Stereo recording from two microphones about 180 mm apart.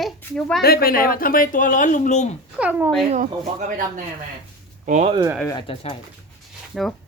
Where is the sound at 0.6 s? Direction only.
60° left (ahead or behind); by 2.3 s 40° left (ahead or behind).